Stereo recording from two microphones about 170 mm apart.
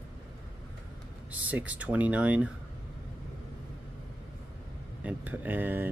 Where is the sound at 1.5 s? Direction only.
10° right (ahead or behind).